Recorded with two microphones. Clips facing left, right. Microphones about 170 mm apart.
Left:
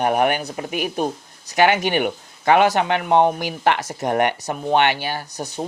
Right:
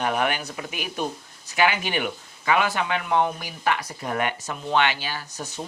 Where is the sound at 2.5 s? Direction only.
65° left (ahead or behind).